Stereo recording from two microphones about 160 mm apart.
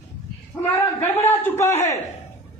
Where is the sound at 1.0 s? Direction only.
10° left (ahead or behind).